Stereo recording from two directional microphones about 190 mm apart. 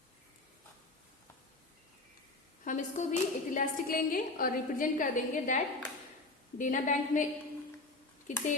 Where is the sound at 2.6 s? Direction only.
40° left (ahead or behind).